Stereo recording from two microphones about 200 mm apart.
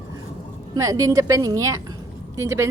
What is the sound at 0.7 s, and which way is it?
A woman's voice, 15° right (ahead or behind).